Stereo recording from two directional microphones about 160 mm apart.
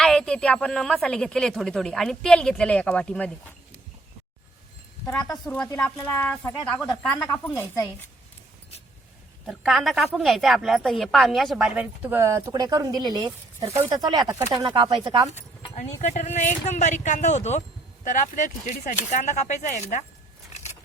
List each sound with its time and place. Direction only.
0.0 s a woman's voice: 5° left (ahead or behind)
5.7 s speech: 10° left (ahead or behind)
9.5 s a woman's voice: centre (ahead or behind); by 15.3 s 30° right (ahead or behind)
15.7 s speech: 45° left (ahead or behind)